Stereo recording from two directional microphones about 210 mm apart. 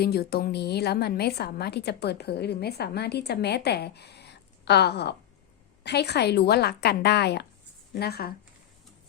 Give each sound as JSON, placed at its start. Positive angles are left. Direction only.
{"t": 0.0, "sound": "a woman's voice", "side_deg": 50}